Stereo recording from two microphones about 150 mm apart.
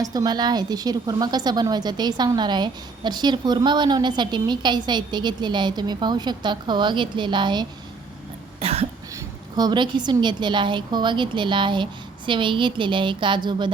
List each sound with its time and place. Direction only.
0.0 s a woman's voice: 25° right (ahead or behind)
8.6 s cough: 40° right (ahead or behind)
9.1 s a woman's voice: 25° right (ahead or behind)